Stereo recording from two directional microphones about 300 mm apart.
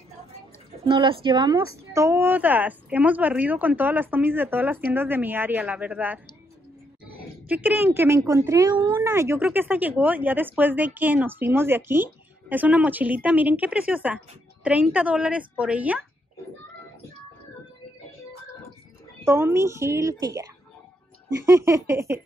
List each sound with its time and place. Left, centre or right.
0.8 s a woman's voice: centre
19.2 s a woman's voice: centre
21.5 s a woman's voice: centre